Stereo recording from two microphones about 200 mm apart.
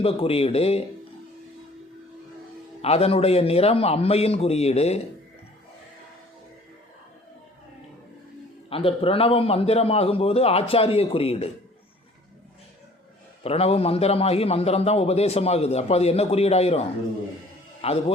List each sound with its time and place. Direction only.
0.0 s a man's voice: 30° left (ahead or behind)
2.8 s a man's voice: 30° left (ahead or behind)
8.7 s a man's voice: 30° left (ahead or behind)
13.4 s a man's voice: 30° left (ahead or behind)